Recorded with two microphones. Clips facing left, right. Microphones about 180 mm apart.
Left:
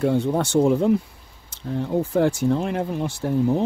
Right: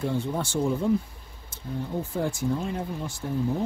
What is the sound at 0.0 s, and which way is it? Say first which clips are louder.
Speech: left 8 dB; 65° left (ahead or behind).